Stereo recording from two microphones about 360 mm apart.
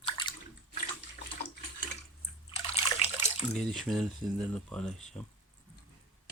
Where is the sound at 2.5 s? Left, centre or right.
Centre.